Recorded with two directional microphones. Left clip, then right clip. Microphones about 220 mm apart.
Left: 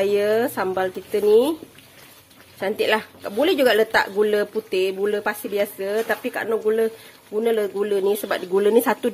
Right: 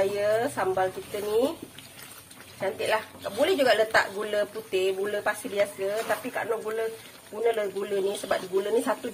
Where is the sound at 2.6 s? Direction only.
50° left (ahead or behind).